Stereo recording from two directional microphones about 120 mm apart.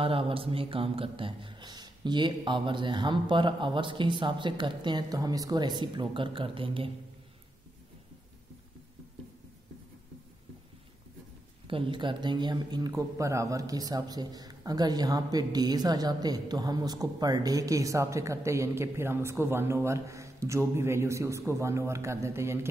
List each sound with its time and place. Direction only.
0.0 s speech: 50° right (ahead or behind)
11.6 s a man's voice: 45° right (ahead or behind); by 22.7 s 20° right (ahead or behind)